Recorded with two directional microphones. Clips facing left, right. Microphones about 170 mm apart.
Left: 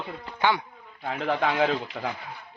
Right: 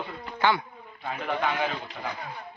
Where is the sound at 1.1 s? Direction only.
90° left.